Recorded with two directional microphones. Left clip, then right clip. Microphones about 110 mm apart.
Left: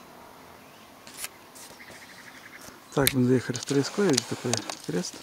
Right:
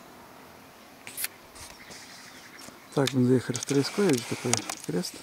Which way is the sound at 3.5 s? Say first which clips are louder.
Even; 45° left (ahead or behind).